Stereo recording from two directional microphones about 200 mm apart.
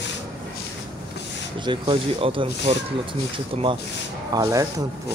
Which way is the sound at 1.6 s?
25° right (ahead or behind).